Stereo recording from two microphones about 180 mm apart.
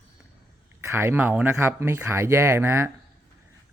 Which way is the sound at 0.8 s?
15° right (ahead or behind).